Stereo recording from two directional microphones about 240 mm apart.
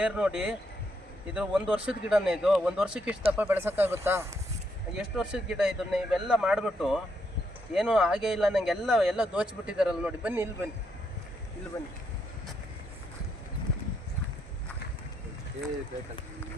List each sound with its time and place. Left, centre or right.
0.0 s speech: centre
11.7 s speech: centre